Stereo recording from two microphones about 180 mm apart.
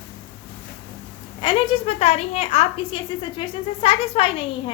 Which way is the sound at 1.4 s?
30° left (ahead or behind).